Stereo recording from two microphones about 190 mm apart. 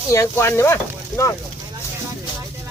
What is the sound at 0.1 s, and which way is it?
Speech, 15° left (ahead or behind).